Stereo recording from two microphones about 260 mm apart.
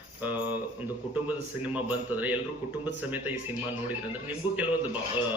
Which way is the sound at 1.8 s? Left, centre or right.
Centre.